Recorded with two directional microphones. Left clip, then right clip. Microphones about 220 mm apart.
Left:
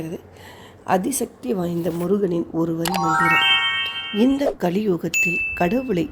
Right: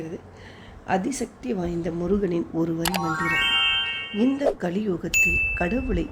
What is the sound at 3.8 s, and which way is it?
Music, 20° left (ahead or behind).